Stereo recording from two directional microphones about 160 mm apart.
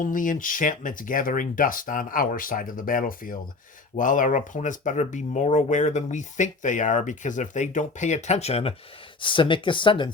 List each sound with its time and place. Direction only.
0.0 s speech: 55° left (ahead or behind); by 10.1 s 30° left (ahead or behind)